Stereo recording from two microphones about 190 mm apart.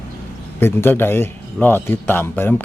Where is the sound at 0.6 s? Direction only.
10° left (ahead or behind).